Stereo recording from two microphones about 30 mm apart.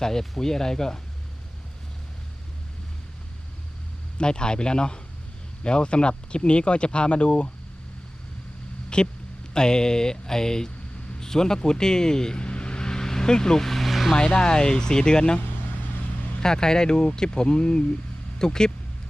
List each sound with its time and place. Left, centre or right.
0.0 s speech: centre
4.2 s speech: left
8.9 s speech: left
12.4 s vehicle: left; by 13.8 s centre
13.8 s vehicle: centre
14.2 s speech: left
16.4 s speech: left